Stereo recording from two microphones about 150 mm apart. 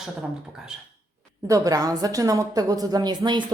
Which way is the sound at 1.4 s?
20° right (ahead or behind).